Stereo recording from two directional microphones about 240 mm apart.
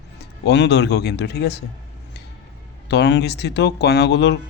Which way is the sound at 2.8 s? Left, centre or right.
Left.